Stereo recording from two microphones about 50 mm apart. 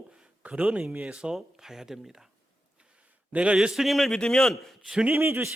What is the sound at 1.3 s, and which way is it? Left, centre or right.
Speech, centre.